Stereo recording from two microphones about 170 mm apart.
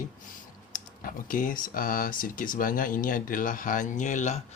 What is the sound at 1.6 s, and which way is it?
Speech, 55° left (ahead or behind).